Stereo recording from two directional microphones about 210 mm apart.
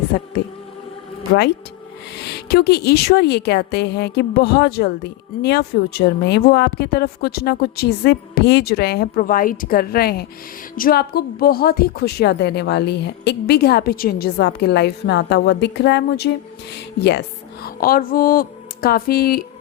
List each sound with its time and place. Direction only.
0.1 s speech: 45° left (ahead or behind)
2.1 s speech: 50° left (ahead or behind)